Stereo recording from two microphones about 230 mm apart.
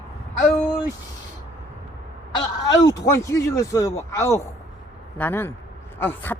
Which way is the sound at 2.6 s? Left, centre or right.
Centre.